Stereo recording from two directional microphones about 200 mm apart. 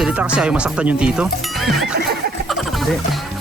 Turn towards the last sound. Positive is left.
turn(degrees=0)  # may be behind; listen again after turning